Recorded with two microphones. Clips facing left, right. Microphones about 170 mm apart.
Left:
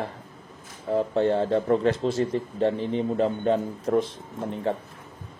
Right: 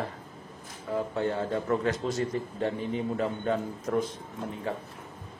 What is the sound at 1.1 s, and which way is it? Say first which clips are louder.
A man's voice: left 8 dB; 30° left (ahead or behind).